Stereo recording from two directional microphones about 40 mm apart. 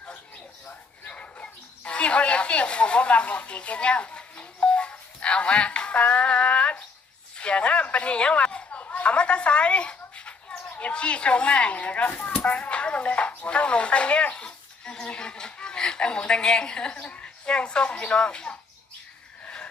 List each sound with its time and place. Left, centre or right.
1.1 s dog: left
1.9 s a sound: left
8.9 s speech: left